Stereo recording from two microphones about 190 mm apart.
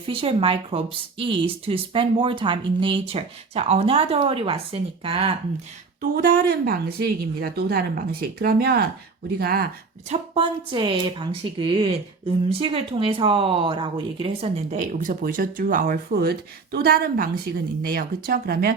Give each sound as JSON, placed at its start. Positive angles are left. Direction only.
{"t": 0.1, "sound": "speech", "side_deg": -30}
{"t": 6.0, "sound": "speech", "side_deg": -50}
{"t": 10.1, "sound": "speech", "side_deg": -25}